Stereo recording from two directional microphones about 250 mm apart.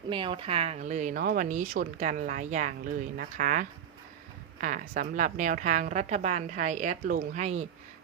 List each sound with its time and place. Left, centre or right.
0.1 s a woman's voice: centre